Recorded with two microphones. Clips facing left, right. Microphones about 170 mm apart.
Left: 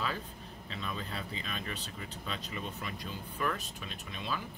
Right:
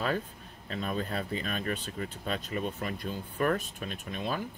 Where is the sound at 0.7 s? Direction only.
45° right (ahead or behind).